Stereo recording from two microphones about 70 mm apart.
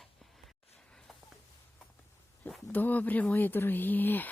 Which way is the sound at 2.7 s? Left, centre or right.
Left.